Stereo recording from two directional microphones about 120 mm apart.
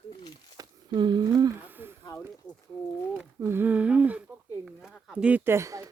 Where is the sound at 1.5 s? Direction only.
15° right (ahead or behind).